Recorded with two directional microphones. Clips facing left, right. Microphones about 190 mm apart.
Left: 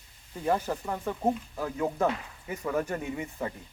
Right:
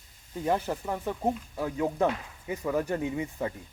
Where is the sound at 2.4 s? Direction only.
15° right (ahead or behind).